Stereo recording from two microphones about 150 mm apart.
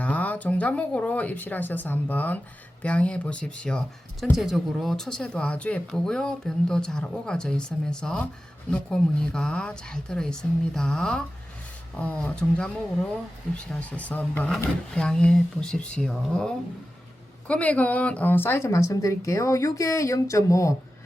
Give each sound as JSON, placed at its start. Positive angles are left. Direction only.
{"t": 0.0, "sound": "speech", "side_deg": 10}